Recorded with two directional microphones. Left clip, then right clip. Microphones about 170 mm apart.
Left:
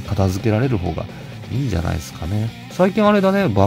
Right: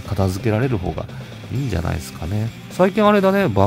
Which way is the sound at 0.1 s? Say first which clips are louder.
Left 1 dB; 5° right (ahead or behind).